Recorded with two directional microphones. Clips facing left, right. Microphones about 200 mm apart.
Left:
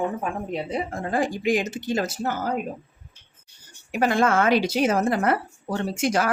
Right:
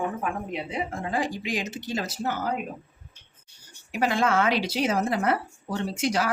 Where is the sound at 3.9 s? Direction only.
50° left (ahead or behind).